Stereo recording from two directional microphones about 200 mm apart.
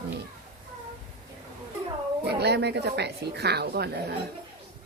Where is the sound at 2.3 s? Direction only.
55° right (ahead or behind).